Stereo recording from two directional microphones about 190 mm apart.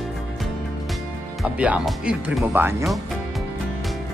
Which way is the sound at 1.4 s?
5° right (ahead or behind).